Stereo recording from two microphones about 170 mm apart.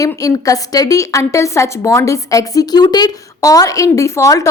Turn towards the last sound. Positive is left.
turn(degrees=20)  # may be behind; listen again after turning